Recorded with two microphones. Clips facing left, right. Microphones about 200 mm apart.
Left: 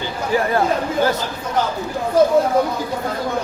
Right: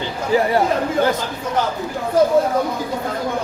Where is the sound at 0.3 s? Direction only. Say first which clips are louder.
Right 2 dB; 15° right (ahead or behind).